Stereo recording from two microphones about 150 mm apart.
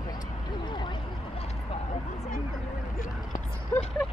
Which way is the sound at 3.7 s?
15° left (ahead or behind).